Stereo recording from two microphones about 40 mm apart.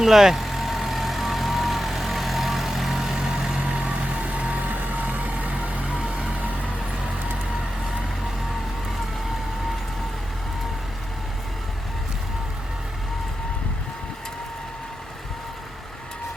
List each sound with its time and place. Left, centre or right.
0.0 s vehicle: centre
3.6 s vehicle: right
4.6 s vehicle: right; by 7.2 s centre